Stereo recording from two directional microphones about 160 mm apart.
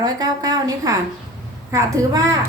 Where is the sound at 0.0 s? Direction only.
25° right (ahead or behind).